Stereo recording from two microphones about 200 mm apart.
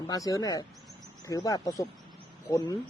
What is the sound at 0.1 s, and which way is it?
Speech, 15° left (ahead or behind).